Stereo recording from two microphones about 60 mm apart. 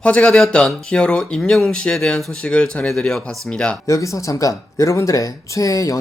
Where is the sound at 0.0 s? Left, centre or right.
Centre.